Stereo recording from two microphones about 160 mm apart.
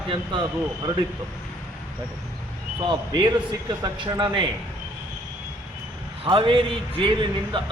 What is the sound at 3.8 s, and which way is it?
Speech, 25° right (ahead or behind).